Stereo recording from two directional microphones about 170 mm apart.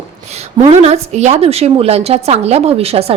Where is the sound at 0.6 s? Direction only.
40° right (ahead or behind).